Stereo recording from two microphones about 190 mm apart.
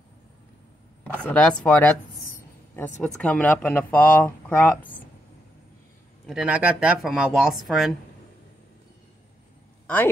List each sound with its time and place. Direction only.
1.2 s speech: 5° left (ahead or behind)
3.2 s speech: 5° left (ahead or behind)
6.2 s speech: 5° right (ahead or behind)